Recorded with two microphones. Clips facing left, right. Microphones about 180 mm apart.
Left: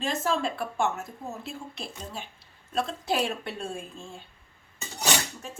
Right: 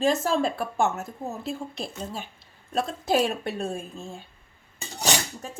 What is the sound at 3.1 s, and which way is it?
A woman's voice, 40° right (ahead or behind).